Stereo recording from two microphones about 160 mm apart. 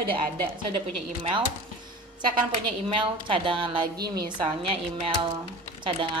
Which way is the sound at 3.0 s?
35° right (ahead or behind).